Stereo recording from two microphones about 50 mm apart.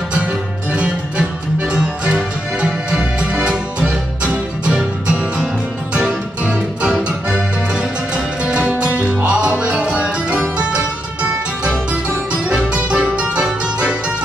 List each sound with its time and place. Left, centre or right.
0.7 s music: right
11.9 s music: right